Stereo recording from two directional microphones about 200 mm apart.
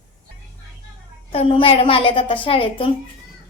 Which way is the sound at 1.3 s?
30° left (ahead or behind).